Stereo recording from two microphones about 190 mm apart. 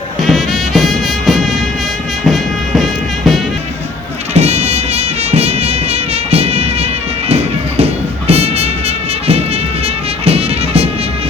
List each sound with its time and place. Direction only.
0.2 s music: centre (ahead or behind)
4.4 s music: 35° right (ahead or behind)
9.8 s music: 30° right (ahead or behind)